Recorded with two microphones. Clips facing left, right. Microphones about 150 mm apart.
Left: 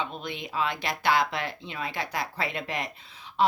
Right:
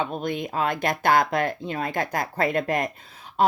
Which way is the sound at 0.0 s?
45° right (ahead or behind).